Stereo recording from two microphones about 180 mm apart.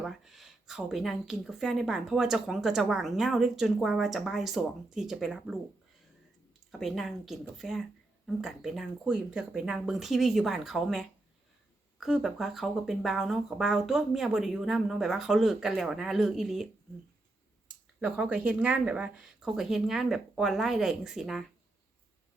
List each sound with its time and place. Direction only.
0.0 s speech: centre (ahead or behind)
6.7 s speech: centre (ahead or behind)
18.0 s speech: 5° right (ahead or behind)